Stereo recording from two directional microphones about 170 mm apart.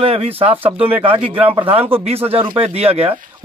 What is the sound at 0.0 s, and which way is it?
Speech, 35° right (ahead or behind).